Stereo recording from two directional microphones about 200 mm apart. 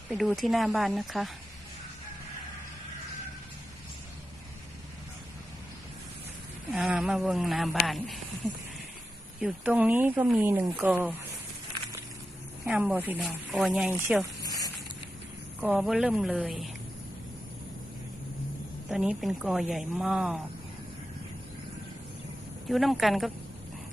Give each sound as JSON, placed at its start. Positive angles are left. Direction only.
{"t": 0.1, "sound": "speech", "side_deg": 0}
{"t": 6.7, "sound": "speech", "side_deg": -5}
{"t": 9.4, "sound": "speech", "side_deg": -5}
{"t": 12.6, "sound": "speech", "side_deg": -5}
{"t": 14.4, "sound": "a sound", "side_deg": 20}
{"t": 15.6, "sound": "speech", "side_deg": -5}
{"t": 18.9, "sound": "speech", "side_deg": 0}
{"t": 22.7, "sound": "speech", "side_deg": 0}